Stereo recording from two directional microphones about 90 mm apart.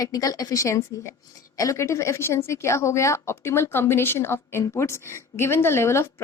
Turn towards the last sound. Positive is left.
turn(degrees=30)  # may be behind; listen again after turning